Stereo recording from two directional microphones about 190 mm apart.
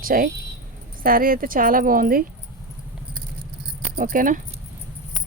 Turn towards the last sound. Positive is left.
turn(degrees=-45)  # may be behind; listen again after turning